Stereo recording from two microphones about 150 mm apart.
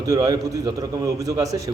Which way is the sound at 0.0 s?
25° right (ahead or behind).